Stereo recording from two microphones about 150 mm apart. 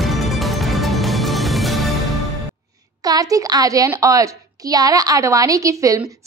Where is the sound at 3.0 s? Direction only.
25° right (ahead or behind).